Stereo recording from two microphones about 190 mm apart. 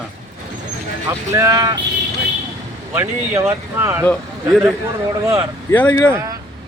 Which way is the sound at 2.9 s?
10° right (ahead or behind).